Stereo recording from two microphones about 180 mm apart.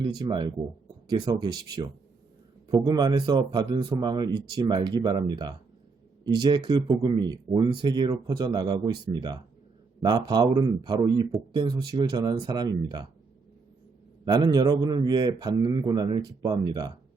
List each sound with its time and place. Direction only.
0.0 s a man's voice: 25° right (ahead or behind)
14.3 s a man's voice: 20° right (ahead or behind)